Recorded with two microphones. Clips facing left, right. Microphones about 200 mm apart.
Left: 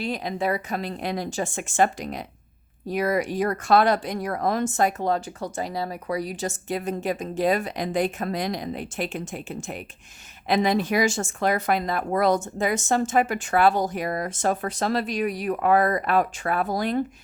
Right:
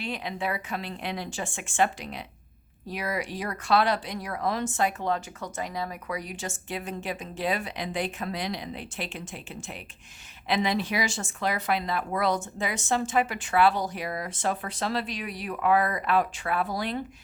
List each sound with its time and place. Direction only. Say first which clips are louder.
0.0 s a woman's voice: left 5 dB; 40° left (ahead or behind)